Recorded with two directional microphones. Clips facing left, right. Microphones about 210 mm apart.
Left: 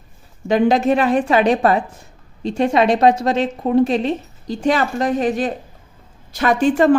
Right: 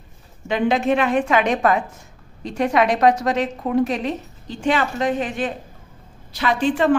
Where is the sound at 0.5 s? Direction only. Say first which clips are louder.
Left 4 dB; 40° left (ahead or behind).